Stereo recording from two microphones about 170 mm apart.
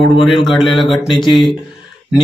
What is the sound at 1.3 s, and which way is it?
Speech, 30° left (ahead or behind).